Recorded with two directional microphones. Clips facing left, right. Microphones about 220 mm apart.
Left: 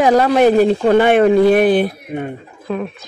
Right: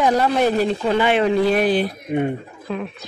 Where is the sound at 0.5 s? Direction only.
50° left (ahead or behind).